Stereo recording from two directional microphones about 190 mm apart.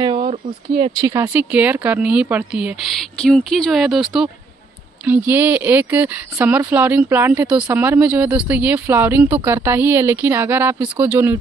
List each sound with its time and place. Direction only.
0.0 s speech: 30° right (ahead or behind)
1.0 s speech: 15° right (ahead or behind)